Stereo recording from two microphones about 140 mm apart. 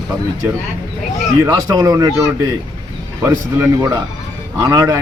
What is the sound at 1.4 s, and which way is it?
Speech, 25° right (ahead or behind).